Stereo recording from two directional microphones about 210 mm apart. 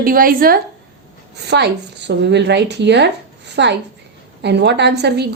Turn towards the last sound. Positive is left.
turn(degrees=-55)  # may be behind; listen again after turning